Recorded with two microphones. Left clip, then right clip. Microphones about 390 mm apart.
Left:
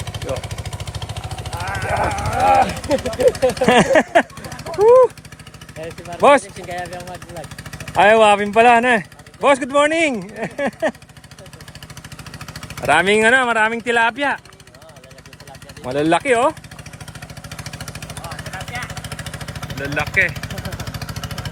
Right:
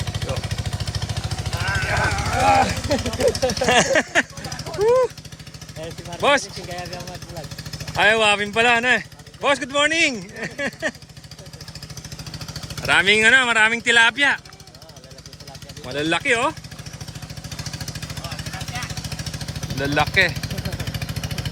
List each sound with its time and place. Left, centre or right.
0.0 s vehicle: left
6.1 s speech: centre
7.9 s speech: centre
12.7 s speech: centre
15.9 s speech: centre
19.8 s speech: centre
20.7 s vehicle: centre